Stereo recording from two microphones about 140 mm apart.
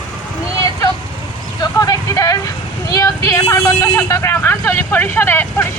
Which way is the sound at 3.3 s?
20° left (ahead or behind).